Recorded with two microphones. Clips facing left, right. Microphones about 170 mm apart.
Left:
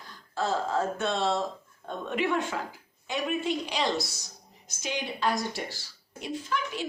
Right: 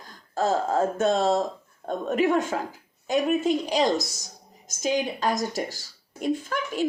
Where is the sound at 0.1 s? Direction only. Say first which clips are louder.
Right 5 dB; 45° right (ahead or behind).